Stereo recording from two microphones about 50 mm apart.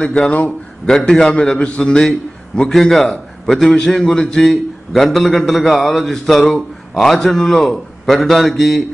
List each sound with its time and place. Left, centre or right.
0.0 s a man's voice: left; by 8.8 s centre